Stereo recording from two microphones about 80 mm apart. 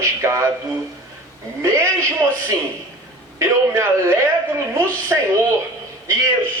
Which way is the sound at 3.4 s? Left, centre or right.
Right.